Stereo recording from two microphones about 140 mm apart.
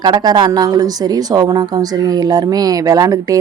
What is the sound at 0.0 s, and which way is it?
A woman's voice, 30° right (ahead or behind).